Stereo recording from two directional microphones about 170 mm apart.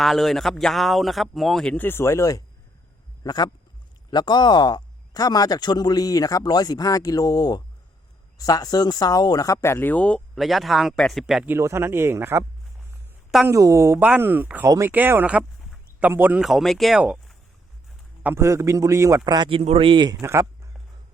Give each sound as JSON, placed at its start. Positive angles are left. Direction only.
{"t": 0.0, "sound": "speech", "side_deg": 0}
{"t": 11.5, "sound": "speech", "side_deg": -15}
{"t": 13.5, "sound": "speech", "side_deg": -20}
{"t": 18.2, "sound": "a man's voice", "side_deg": -15}